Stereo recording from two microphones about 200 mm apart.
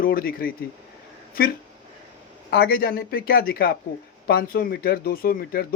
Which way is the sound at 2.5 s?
50° left (ahead or behind).